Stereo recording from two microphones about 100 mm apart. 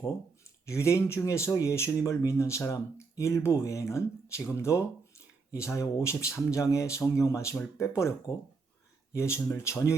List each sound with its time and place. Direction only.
0.6 s speech: 30° left (ahead or behind)
9.1 s speech: 25° left (ahead or behind)